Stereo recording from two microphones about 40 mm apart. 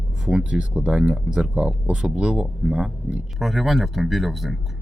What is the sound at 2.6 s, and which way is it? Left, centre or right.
Speech, centre.